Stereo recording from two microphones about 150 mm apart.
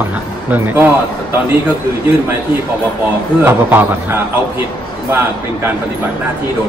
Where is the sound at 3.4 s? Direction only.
15° right (ahead or behind).